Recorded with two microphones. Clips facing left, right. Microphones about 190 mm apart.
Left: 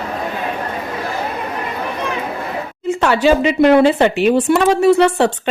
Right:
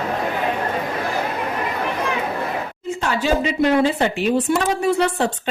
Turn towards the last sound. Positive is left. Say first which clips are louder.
# left 7 dB
turn(degrees=80)